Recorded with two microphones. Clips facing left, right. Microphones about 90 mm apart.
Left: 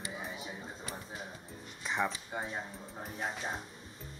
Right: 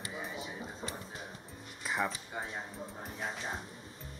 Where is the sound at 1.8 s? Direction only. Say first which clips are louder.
Left 1 dB; 5° right (ahead or behind).